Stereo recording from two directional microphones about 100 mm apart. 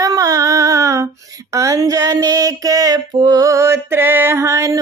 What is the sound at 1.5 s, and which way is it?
Music, 35° right (ahead or behind).